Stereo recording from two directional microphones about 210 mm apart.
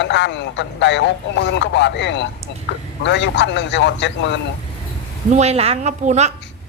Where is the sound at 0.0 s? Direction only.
55° left (ahead or behind).